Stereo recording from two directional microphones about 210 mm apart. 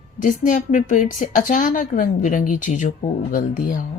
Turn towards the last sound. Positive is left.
turn(degrees=40)  # may be behind; listen again after turning